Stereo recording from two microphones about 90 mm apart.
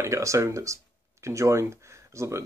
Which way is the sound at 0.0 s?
35° right (ahead or behind).